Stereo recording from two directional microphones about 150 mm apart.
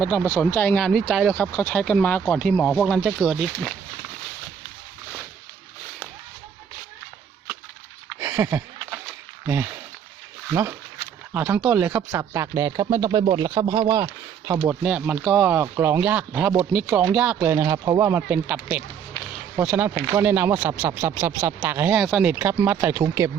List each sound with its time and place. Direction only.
0.0 s speech: 10° left (ahead or behind)
1.5 s speech: 15° left (ahead or behind)
8.2 s a sound: 15° right (ahead or behind)
10.5 s speech: 15° right (ahead or behind)
14.7 s speech: 10° right (ahead or behind)